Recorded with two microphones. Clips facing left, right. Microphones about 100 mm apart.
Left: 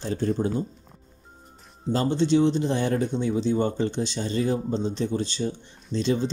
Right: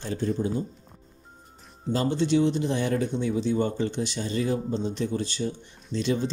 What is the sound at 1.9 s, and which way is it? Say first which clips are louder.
Speech: left 2 dB; 30° left (ahead or behind).